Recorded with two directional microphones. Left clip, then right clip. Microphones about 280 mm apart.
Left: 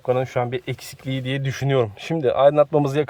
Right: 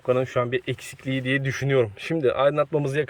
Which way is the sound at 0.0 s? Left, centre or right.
Centre.